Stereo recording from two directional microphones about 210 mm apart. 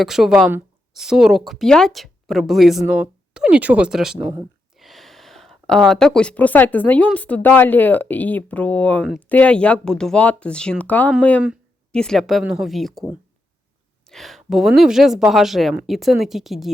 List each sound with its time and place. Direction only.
0.0 s speech: centre (ahead or behind)
4.2 s speech: 15° right (ahead or behind)
4.8 s speech: centre (ahead or behind)